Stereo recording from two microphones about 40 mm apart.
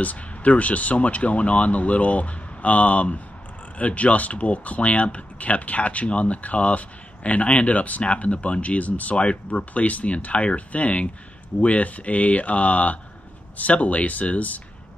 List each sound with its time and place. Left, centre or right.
0.0 s speech: left